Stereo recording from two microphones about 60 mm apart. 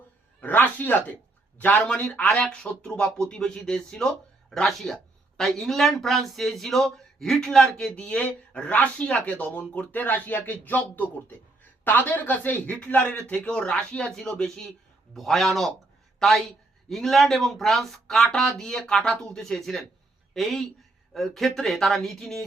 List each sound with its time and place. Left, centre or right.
0.4 s speech: left
2.3 s speech: centre
7.9 s speech: left